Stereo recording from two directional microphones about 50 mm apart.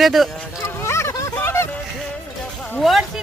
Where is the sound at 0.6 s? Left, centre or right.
Left.